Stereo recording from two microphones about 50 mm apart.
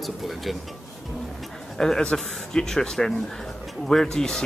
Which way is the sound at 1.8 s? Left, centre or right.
Centre.